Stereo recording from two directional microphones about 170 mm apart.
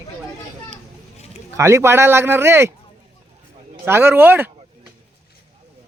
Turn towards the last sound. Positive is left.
turn(degrees=-10)  # may be behind; listen again after turning